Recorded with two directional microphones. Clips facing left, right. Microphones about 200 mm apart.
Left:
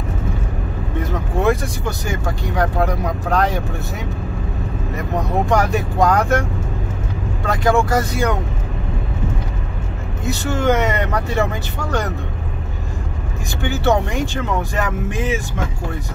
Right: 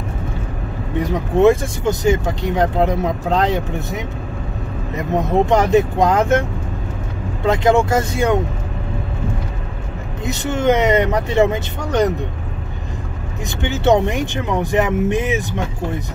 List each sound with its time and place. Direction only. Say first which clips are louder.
0.9 s speech: right 6 dB; 15° right (ahead or behind)
7.4 s speech: right 3 dB; 20° right (ahead or behind)
10.2 s speech: right 1 dB; 20° right (ahead or behind)
13.6 s speech: right 3 dB; 20° right (ahead or behind)